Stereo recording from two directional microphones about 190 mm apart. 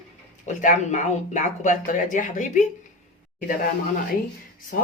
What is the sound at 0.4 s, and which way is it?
Speech, 40° left (ahead or behind).